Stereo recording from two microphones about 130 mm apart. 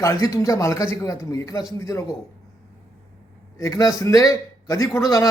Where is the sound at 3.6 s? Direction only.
25° left (ahead or behind).